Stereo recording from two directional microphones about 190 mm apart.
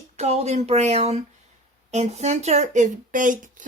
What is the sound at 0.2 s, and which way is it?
Speech, 35° right (ahead or behind).